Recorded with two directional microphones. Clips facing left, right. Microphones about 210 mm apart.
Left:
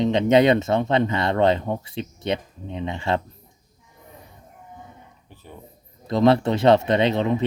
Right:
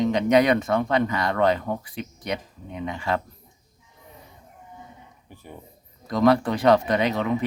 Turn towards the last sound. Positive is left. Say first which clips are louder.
# left 3 dB
turn(degrees=25)  # may be behind; listen again after turning